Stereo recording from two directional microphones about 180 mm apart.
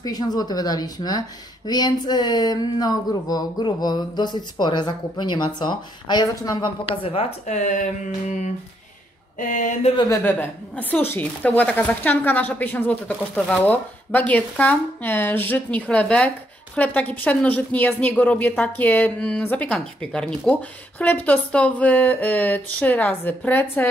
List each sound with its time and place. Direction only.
0.0 s speech: 20° left (ahead or behind)
7.4 s a sound: 45° left (ahead or behind)
10.2 s a woman's voice: 10° left (ahead or behind)